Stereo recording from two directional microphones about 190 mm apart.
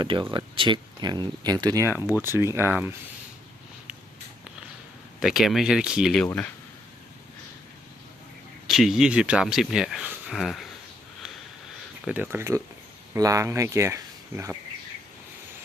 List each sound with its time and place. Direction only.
0.0 s speech: 25° right (ahead or behind)
2.0 s speech: 15° left (ahead or behind)
2.2 s speech: 15° right (ahead or behind)
5.2 s speech: centre (ahead or behind)
6.2 s speech: 10° left (ahead or behind)
8.6 s speech: centre (ahead or behind)
12.0 s speech: 10° right (ahead or behind)